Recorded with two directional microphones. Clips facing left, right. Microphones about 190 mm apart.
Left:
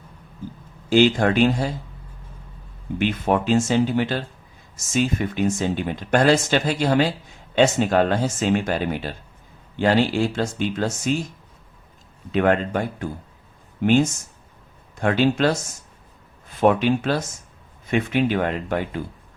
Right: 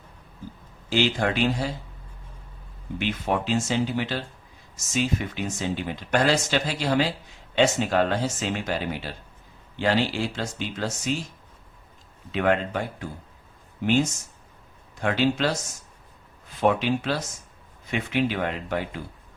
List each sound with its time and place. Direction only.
0.9 s speech: 50° left (ahead or behind)
3.0 s speech: 50° left (ahead or behind)
12.3 s speech: 50° left (ahead or behind)
14.9 s speech: 50° left (ahead or behind)
16.6 s speech: 50° left (ahead or behind)